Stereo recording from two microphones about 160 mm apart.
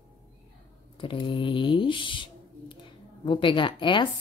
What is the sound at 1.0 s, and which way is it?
A woman's voice, 30° left (ahead or behind).